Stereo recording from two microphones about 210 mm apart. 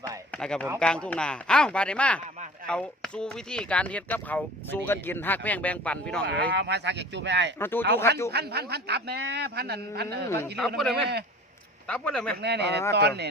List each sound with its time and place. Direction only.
0.3 s speech: 5° left (ahead or behind)
6.2 s speech: 55° right (ahead or behind)
7.6 s speech: 10° left (ahead or behind)
8.3 s a man's voice: 50° right (ahead or behind)
10.2 s speech: 10° left (ahead or behind)
10.8 s speech: centre (ahead or behind)
12.4 s a man's voice: 55° right (ahead or behind)